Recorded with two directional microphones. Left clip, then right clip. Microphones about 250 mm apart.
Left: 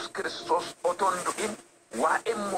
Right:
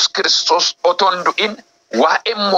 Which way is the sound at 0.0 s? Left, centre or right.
Right.